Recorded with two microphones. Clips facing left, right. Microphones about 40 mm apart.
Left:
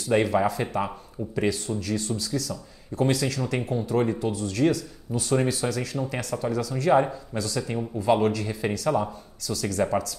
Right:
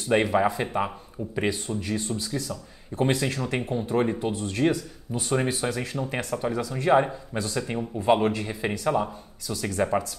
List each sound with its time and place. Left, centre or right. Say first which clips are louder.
0.1 s speech: even; right